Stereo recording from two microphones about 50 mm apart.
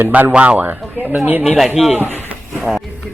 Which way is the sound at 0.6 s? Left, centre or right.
Right.